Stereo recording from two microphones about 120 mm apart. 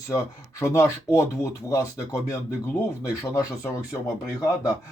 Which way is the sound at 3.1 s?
25° left (ahead or behind).